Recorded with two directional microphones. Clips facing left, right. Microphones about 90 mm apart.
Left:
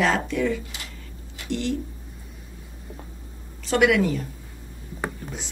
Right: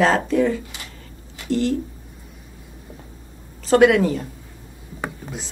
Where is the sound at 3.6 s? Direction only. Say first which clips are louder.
Right 5 dB; 35° right (ahead or behind).